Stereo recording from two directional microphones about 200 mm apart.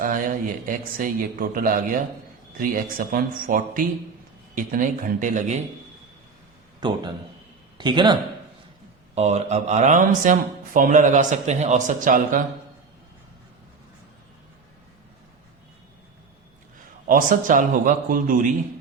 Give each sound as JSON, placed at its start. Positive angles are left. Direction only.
{"t": 0.0, "sound": "speech", "side_deg": -40}
{"t": 6.7, "sound": "a man's voice", "side_deg": -20}
{"t": 17.1, "sound": "speech", "side_deg": -45}